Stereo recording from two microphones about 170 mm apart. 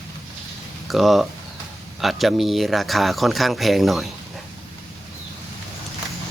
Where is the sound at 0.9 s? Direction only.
Centre (ahead or behind).